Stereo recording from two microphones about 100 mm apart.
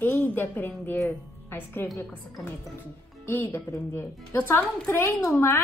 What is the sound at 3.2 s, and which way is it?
A woman's voice, 25° left (ahead or behind).